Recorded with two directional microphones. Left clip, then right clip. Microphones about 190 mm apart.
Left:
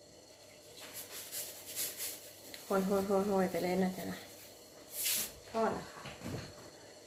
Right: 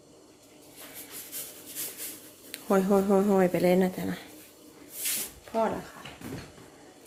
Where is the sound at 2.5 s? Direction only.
60° right (ahead or behind).